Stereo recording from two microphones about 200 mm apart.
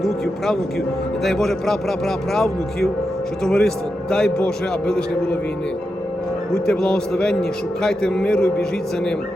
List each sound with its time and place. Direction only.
1.2 s a man's voice: centre (ahead or behind)
6.5 s a man's voice: 5° left (ahead or behind)